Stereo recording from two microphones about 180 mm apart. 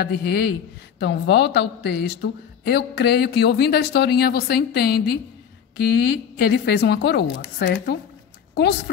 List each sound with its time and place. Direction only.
0.0 s a woman's voice: 65° left (ahead or behind)